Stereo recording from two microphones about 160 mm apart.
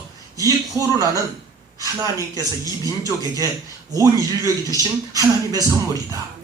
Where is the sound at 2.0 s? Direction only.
20° right (ahead or behind).